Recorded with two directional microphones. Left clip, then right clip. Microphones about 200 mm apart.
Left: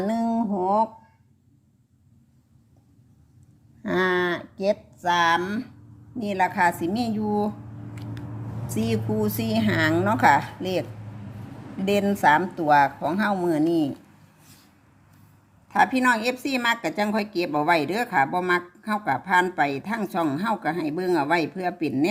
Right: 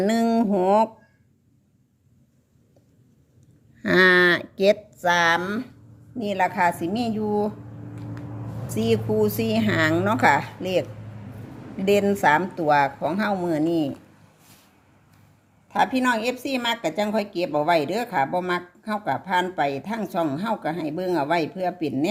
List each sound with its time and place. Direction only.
0.0 s a sound: 35° right (ahead or behind)
3.8 s speech: 30° right (ahead or behind)
5.0 s a woman's voice: 15° right (ahead or behind); by 7.5 s centre (ahead or behind)
8.7 s a woman's voice: centre (ahead or behind)
11.9 s a woman's voice: 5° right (ahead or behind)
15.7 s a woman's voice: centre (ahead or behind)